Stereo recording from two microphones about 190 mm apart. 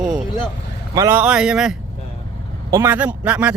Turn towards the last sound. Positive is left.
turn(degrees=-5)  # may be behind; listen again after turning